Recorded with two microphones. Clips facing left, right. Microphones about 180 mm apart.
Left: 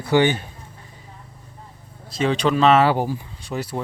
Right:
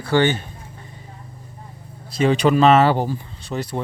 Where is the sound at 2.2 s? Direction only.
5° right (ahead or behind).